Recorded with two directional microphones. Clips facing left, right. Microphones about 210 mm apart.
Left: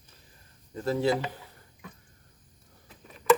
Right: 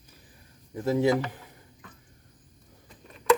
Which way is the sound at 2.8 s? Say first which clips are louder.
Even; centre (ahead or behind).